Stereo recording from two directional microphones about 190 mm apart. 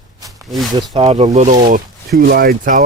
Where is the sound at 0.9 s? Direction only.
35° right (ahead or behind).